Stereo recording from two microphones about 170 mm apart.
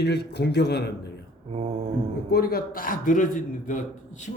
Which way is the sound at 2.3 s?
60° left (ahead or behind).